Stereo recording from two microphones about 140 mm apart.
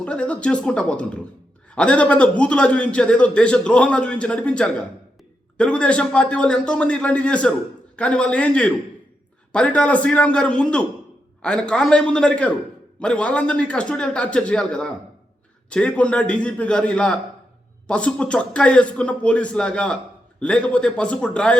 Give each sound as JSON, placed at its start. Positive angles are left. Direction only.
{"t": 0.0, "sound": "a man's voice", "side_deg": 10}